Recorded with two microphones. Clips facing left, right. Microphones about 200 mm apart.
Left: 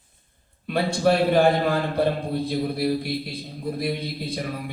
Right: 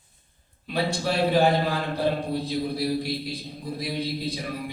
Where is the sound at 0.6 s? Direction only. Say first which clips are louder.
Left 5 dB; 55° left (ahead or behind).